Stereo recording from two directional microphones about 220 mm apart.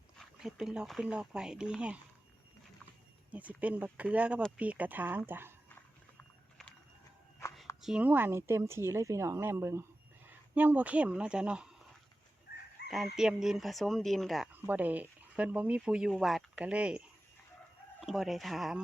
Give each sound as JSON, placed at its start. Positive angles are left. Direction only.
{"t": 0.2, "sound": "speech", "side_deg": 0}
{"t": 3.3, "sound": "speech", "side_deg": -5}
{"t": 7.8, "sound": "speech", "side_deg": -5}
{"t": 12.8, "sound": "chicken", "side_deg": 50}
{"t": 13.1, "sound": "speech", "side_deg": 0}
{"t": 18.0, "sound": "speech", "side_deg": 0}